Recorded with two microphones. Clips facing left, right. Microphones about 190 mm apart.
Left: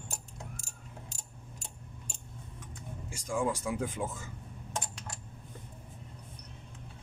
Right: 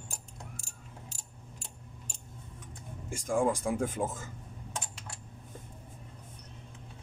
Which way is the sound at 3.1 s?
50° right (ahead or behind).